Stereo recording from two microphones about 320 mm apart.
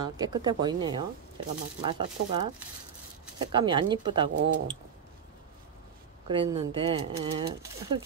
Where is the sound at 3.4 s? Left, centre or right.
Centre.